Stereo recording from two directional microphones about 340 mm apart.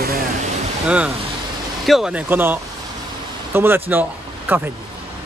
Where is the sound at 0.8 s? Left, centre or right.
Centre.